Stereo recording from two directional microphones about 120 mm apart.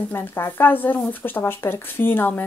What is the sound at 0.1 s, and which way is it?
Speech, 20° left (ahead or behind).